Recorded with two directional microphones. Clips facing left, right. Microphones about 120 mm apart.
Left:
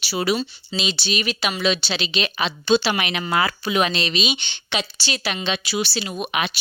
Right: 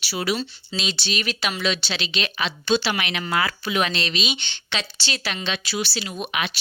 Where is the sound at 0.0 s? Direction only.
20° left (ahead or behind).